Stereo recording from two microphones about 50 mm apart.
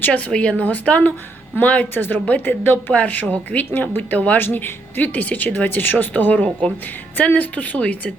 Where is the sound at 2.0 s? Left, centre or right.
Left.